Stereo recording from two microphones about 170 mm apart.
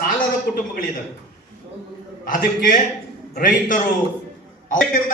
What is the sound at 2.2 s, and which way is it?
A man's voice, 55° left (ahead or behind).